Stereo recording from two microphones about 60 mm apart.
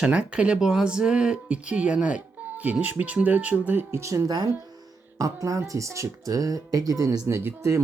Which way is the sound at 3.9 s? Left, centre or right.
Right.